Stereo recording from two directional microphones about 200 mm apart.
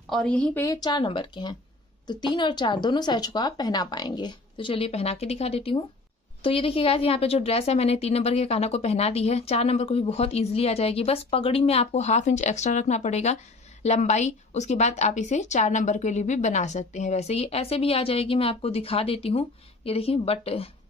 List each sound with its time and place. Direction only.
0.1 s a woman's voice: 5° left (ahead or behind)
0.7 s a woman's voice: 20° left (ahead or behind)